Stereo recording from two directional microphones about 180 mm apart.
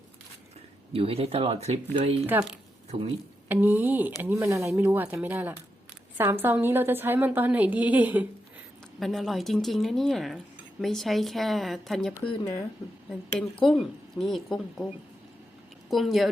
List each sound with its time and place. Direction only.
0.9 s speech: 30° right (ahead or behind)
2.2 s a woman's voice: 10° right (ahead or behind)
3.5 s a woman's voice: 10° right (ahead or behind)
9.0 s speech: centre (ahead or behind)
12.2 s speech: 30° left (ahead or behind)
13.6 s speech: centre (ahead or behind)